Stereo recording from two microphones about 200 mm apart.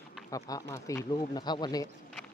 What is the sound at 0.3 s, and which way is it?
Speech, 15° left (ahead or behind).